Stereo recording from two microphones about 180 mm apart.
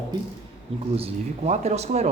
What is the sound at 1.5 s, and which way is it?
Speech, 35° right (ahead or behind).